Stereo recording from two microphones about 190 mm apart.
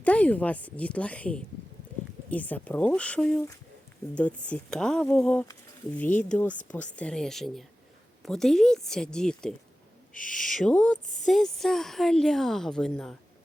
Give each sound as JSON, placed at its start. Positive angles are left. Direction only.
{"t": 0.0, "sound": "a woman's voice", "side_deg": 5}
{"t": 10.2, "sound": "owl", "side_deg": 45}
{"t": 10.4, "sound": "speech", "side_deg": 0}